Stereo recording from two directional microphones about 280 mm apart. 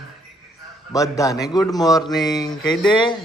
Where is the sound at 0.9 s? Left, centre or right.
Centre.